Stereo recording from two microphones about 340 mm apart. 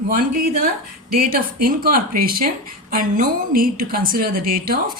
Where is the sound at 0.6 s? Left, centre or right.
Right.